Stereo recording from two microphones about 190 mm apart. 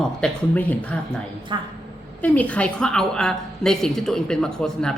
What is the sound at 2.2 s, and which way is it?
A woman's voice, 5° left (ahead or behind).